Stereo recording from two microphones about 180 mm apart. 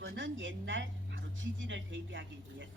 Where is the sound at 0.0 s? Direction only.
90° right.